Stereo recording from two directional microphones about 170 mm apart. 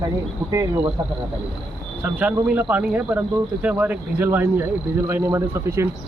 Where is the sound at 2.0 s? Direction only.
10° right (ahead or behind).